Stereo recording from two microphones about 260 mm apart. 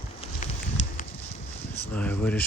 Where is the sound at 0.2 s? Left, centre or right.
Left.